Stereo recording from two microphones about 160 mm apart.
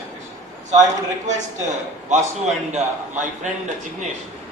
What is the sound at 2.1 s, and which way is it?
A man's voice, 45° right (ahead or behind).